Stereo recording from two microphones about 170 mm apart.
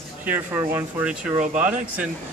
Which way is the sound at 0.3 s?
10° right (ahead or behind).